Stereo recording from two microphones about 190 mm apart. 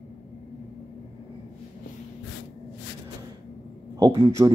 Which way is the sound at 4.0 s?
15° right (ahead or behind).